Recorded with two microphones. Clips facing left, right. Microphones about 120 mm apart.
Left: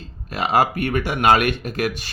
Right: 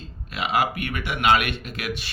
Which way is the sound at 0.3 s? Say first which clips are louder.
Left 5 dB; 40° left (ahead or behind).